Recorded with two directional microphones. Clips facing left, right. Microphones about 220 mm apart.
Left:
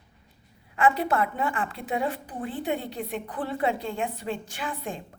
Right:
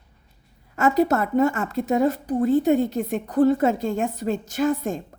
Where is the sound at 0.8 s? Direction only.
40° right (ahead or behind).